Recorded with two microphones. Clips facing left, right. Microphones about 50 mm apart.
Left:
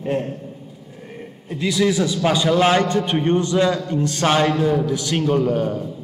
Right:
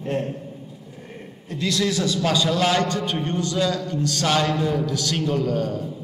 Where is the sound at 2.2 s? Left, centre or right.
Left.